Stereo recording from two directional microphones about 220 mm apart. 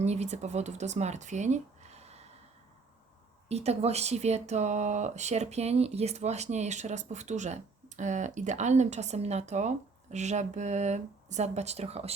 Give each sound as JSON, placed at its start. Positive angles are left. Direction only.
{"t": 0.0, "sound": "speech", "side_deg": -30}
{"t": 3.5, "sound": "speech", "side_deg": -30}